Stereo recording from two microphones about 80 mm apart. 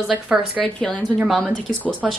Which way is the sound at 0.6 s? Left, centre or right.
Centre.